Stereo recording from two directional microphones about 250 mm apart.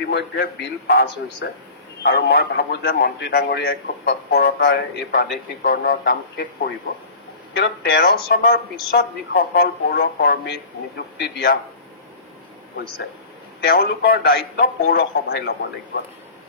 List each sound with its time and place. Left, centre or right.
0.1 s a man's voice: left
13.6 s a man's voice: left